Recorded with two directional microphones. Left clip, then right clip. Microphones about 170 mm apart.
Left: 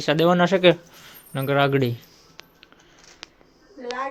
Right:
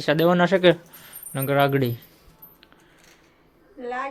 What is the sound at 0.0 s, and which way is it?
Speech, centre (ahead or behind).